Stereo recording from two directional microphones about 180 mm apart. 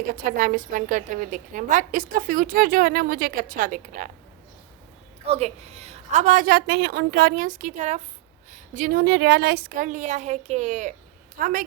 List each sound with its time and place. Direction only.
0.0 s a woman's voice: 50° right (ahead or behind)
5.2 s a woman's voice: 35° right (ahead or behind); by 11.6 s 50° right (ahead or behind)